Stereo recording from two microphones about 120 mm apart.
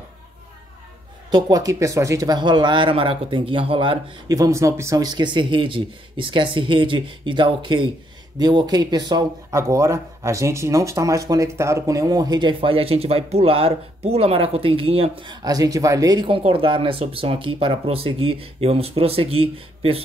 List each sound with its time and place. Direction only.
1.3 s speech: 30° right (ahead or behind)
4.3 s speech: 25° right (ahead or behind); by 15.3 s 50° right (ahead or behind)
15.4 s speech: 30° right (ahead or behind)
16.3 s speech: 50° right (ahead or behind)